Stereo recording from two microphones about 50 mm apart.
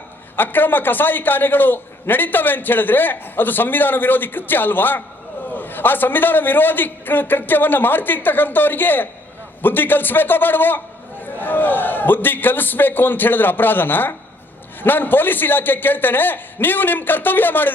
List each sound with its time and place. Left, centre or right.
0.3 s a man's voice: left